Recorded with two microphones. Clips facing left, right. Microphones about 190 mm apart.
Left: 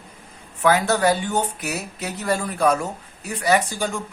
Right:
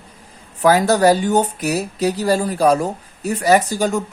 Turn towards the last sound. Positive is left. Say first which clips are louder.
# right 6 dB
turn(degrees=-40)  # may be behind; listen again after turning